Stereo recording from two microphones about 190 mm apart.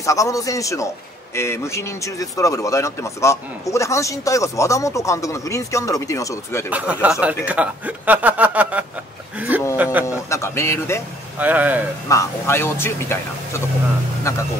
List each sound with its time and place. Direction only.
0.0 s speech: 15° left (ahead or behind)
6.7 s speech: 5° right (ahead or behind)
9.5 s a sound: 10° right (ahead or behind)
10.0 s a sound: 15° left (ahead or behind)
11.3 s speech: 10° right (ahead or behind)
12.1 s speech: 15° left (ahead or behind)